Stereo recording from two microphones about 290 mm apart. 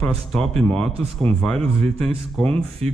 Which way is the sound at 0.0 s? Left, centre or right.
Centre.